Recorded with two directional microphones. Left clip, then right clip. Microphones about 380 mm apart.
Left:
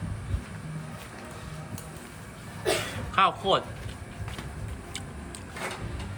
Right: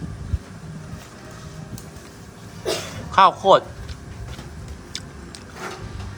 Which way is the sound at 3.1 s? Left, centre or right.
Centre.